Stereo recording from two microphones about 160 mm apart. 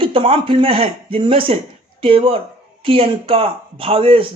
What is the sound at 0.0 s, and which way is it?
Speech, 35° right (ahead or behind).